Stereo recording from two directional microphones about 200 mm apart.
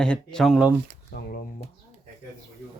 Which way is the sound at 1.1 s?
50° left (ahead or behind).